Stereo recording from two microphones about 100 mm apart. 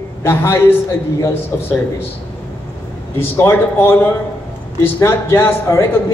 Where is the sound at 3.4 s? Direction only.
20° left (ahead or behind).